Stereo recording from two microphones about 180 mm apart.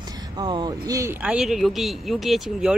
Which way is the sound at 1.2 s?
5° right (ahead or behind).